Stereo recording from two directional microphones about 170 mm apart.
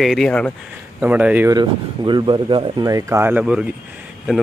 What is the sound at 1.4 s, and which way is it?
Speech, 25° right (ahead or behind).